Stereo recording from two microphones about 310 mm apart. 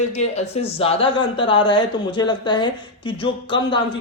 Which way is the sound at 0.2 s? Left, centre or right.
Left.